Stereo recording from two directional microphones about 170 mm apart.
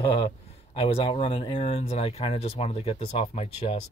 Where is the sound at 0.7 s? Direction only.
35° left (ahead or behind).